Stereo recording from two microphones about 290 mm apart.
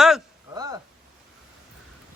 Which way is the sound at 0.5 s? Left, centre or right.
Centre.